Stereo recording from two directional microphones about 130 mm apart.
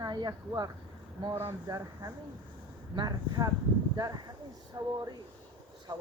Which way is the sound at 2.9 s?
30° right (ahead or behind).